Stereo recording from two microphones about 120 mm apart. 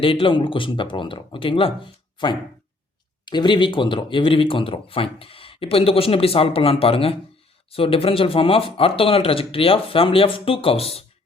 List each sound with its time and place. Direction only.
0.0 s speech: 45° left (ahead or behind)
2.2 s a sound: 40° left (ahead or behind)
3.2 s speech: 40° left (ahead or behind); by 11.0 s 55° left (ahead or behind)